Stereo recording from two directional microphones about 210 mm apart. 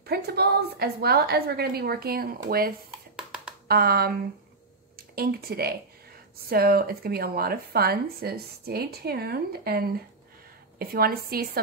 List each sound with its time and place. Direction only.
0.0 s a woman's voice: 50° right (ahead or behind)
3.2 s a sound: 5° right (ahead or behind)
3.6 s a woman's voice: 45° right (ahead or behind)